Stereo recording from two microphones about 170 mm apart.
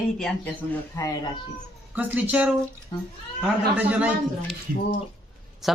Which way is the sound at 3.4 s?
10° right (ahead or behind).